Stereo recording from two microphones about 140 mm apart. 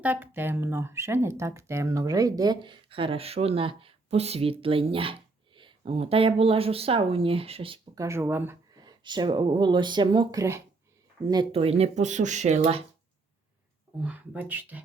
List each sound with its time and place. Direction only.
0.0 s speech: 15° right (ahead or behind); by 7.8 s 40° right (ahead or behind)
7.9 s speech: 20° right (ahead or behind)
8.7 s speech: 30° right (ahead or behind)
11.5 s speech: 45° right (ahead or behind)
14.0 s speech: 10° right (ahead or behind)